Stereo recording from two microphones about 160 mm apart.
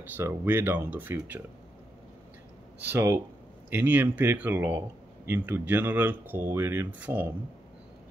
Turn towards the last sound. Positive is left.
turn(degrees=-10)  # may be behind; listen again after turning